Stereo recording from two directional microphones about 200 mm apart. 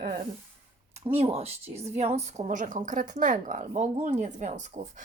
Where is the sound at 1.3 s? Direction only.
30° right (ahead or behind).